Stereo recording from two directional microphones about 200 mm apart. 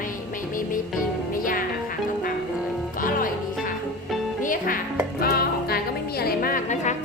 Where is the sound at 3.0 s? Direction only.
45° left (ahead or behind).